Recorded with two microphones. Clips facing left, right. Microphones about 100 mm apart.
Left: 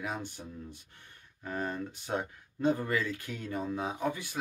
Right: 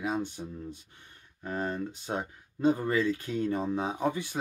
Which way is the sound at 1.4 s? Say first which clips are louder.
Right 3 dB; 20° right (ahead or behind).